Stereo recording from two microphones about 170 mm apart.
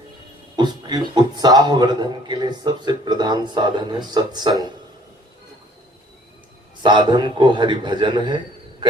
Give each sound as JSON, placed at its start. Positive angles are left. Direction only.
{"t": 0.5, "sound": "a man's voice", "side_deg": -25}
{"t": 6.8, "sound": "a man's voice", "side_deg": -25}